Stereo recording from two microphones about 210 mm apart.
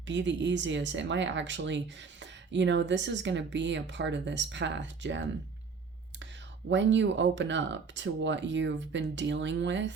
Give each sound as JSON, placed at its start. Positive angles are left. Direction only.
{"t": 0.1, "sound": "speech", "side_deg": -60}
{"t": 6.7, "sound": "speech", "side_deg": -60}